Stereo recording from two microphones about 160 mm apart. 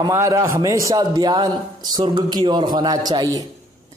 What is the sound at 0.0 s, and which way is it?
A man's voice, 20° right (ahead or behind).